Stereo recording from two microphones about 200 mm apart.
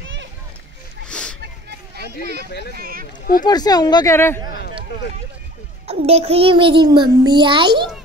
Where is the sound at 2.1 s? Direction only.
55° left (ahead or behind).